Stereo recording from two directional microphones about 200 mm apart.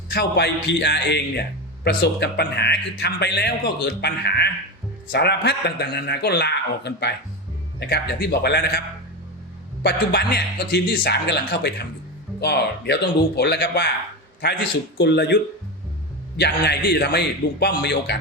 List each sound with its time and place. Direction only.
0.1 s a man's voice: 55° left (ahead or behind)
9.8 s a man's voice: 55° left (ahead or behind)
16.4 s a man's voice: 55° left (ahead or behind)